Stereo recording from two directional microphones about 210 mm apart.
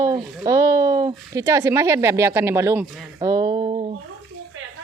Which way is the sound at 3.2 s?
15° right (ahead or behind).